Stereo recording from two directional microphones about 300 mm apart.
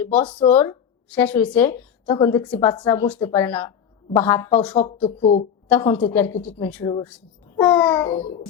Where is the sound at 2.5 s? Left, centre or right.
Centre.